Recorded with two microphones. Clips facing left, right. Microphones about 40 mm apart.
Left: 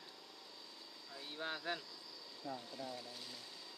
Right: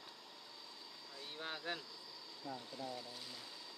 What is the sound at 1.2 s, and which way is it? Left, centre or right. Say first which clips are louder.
Speech: left 2 dB; centre.